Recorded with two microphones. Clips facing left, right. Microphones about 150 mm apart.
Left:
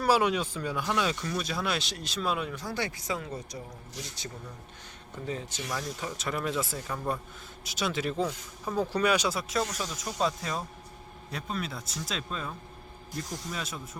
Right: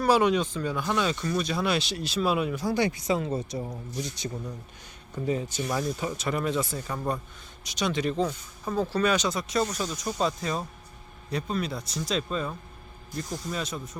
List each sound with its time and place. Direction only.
0.0 s speech: 5° left (ahead or behind)